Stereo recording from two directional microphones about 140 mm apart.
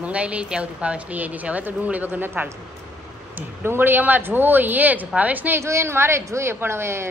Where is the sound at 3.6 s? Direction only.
15° right (ahead or behind).